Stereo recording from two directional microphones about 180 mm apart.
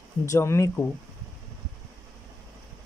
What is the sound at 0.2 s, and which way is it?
Speech, 15° left (ahead or behind).